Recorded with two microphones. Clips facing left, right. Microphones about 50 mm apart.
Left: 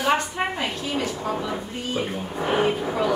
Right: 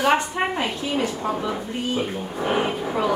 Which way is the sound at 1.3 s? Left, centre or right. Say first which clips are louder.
Right 2 dB; centre.